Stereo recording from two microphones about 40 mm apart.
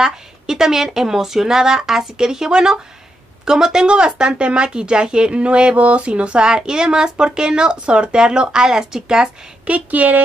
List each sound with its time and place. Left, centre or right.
0.0 s speech: centre
9.7 s speech: right